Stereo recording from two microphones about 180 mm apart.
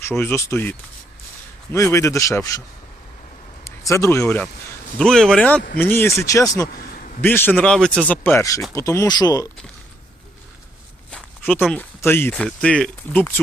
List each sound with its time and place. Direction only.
0.0 s speech: 15° left (ahead or behind)
3.6 s speech: 15° left (ahead or behind)
4.9 s speech: 5° left (ahead or behind); by 6.7 s 20° left (ahead or behind)
6.7 s a sound: 50° left (ahead or behind)
7.2 s speech: 10° left (ahead or behind)
11.1 s speech: 5° left (ahead or behind)